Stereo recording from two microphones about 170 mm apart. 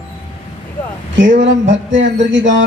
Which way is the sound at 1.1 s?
90° right.